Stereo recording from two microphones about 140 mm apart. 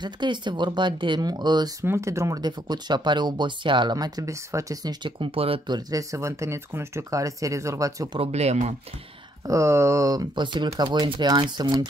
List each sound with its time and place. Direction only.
0.0 s speech: 35° right (ahead or behind)
5.8 s speech: 25° right (ahead or behind)
8.2 s speech: 50° right (ahead or behind)
9.5 s speech: 20° right (ahead or behind)